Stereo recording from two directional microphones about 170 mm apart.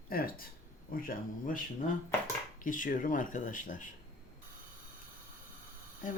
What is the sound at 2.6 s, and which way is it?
Speech, 50° left (ahead or behind).